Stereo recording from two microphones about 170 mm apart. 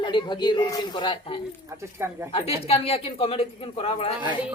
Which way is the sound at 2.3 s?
35° left (ahead or behind).